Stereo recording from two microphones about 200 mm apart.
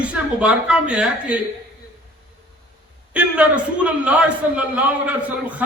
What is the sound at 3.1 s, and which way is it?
A man's voice, 5° right (ahead or behind).